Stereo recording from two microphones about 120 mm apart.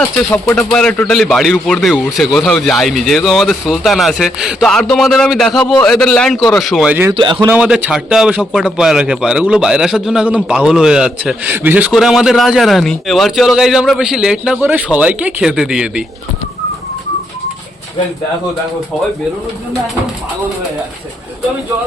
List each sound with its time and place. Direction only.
0.5 s a man's voice: 5° left (ahead or behind)
6.9 s a man's voice: 15° right (ahead or behind)
11.9 s a man's voice: 5° right (ahead or behind)